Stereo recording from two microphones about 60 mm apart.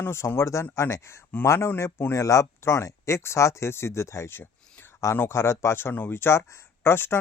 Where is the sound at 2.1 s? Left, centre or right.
Left.